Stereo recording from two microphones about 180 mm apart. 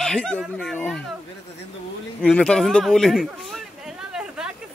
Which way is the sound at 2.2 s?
5° left (ahead or behind).